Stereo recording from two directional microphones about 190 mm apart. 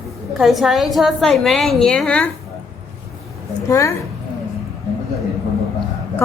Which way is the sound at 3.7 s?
15° left (ahead or behind).